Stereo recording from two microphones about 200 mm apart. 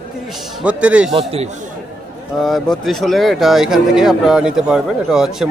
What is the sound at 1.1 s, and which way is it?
Speech, 30° right (ahead or behind).